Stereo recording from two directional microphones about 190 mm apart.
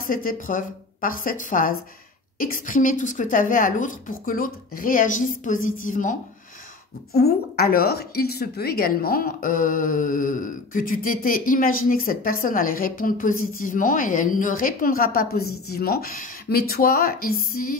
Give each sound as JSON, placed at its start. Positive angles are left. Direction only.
{"t": 0.0, "sound": "a woman's voice", "side_deg": 45}
{"t": 7.1, "sound": "a woman's voice", "side_deg": 55}